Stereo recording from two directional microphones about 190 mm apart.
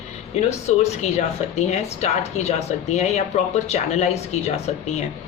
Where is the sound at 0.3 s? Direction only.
35° left (ahead or behind).